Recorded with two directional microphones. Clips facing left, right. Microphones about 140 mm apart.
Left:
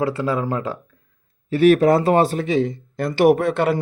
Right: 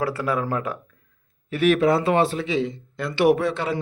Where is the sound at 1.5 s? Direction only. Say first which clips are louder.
Left 5 dB; 35° left (ahead or behind).